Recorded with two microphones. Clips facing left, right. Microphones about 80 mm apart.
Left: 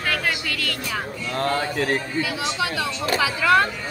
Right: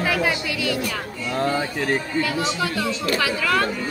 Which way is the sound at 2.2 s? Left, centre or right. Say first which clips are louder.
Right 2 dB; centre.